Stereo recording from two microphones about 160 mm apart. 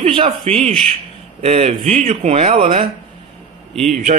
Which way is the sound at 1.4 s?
45° right (ahead or behind).